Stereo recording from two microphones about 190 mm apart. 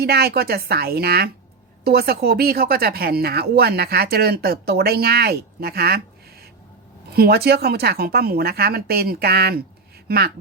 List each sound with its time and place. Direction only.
0.0 s speech: 55° right (ahead or behind)
7.1 s speech: 55° right (ahead or behind)